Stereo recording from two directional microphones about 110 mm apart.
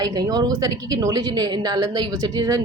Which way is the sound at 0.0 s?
35° right (ahead or behind).